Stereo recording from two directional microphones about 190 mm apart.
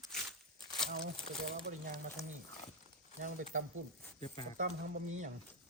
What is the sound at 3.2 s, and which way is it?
Speech, 40° right (ahead or behind).